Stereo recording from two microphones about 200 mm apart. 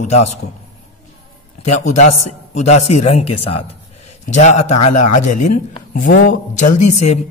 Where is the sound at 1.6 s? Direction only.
35° left (ahead or behind).